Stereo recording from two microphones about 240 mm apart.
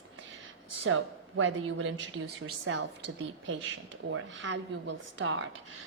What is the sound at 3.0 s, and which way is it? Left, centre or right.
A woman's voice, right.